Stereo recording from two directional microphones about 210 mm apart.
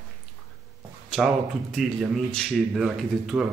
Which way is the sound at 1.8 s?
Centre (ahead or behind).